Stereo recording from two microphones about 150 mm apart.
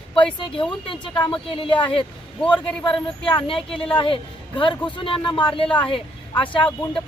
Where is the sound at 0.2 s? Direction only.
30° left (ahead or behind).